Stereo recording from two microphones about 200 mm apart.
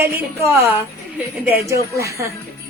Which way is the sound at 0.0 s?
15° right (ahead or behind).